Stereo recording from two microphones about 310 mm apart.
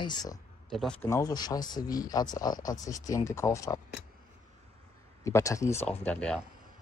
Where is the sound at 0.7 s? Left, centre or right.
Centre.